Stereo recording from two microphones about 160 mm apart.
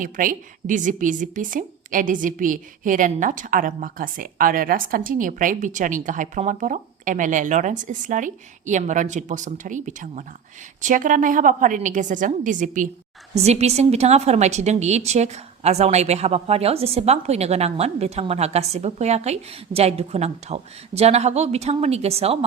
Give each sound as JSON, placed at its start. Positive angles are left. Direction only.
{"t": 0.0, "sound": "a woman's voice", "side_deg": -60}
{"t": 13.3, "sound": "a woman's voice", "side_deg": -40}